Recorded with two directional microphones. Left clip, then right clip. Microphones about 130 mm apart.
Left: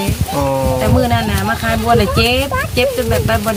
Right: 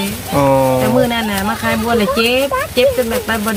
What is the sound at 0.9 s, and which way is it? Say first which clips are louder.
Speech: right 1 dB; 5° left (ahead or behind).